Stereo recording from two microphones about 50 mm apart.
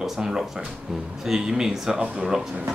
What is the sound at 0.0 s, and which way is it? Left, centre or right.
Speech, centre.